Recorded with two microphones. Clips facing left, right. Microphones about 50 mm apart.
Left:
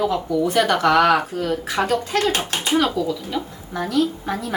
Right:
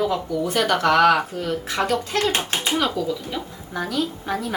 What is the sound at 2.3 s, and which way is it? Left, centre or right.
Speech, centre.